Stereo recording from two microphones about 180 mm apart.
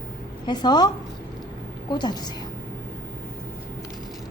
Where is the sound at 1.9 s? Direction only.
25° left (ahead or behind).